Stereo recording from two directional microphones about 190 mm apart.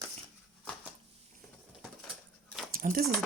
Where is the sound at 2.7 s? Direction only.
50° right (ahead or behind).